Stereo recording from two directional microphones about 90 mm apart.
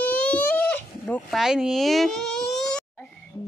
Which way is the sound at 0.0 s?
15° left (ahead or behind).